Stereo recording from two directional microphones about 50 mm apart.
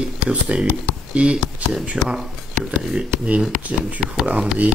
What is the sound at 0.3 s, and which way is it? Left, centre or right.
Speech, right.